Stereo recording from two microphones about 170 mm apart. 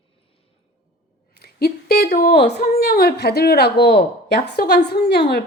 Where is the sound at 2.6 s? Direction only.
60° left (ahead or behind).